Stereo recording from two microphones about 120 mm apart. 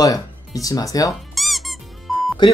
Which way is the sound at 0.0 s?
30° left (ahead or behind).